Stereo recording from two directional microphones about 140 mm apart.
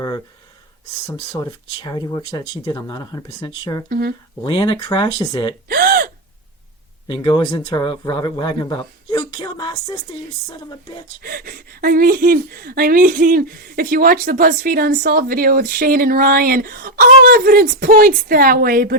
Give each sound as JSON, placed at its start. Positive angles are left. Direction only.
{"t": 1.0, "sound": "speech", "side_deg": 30}
{"t": 5.6, "sound": "gasp", "side_deg": -90}
{"t": 7.1, "sound": "speech", "side_deg": 35}
{"t": 11.2, "sound": "speech", "side_deg": -90}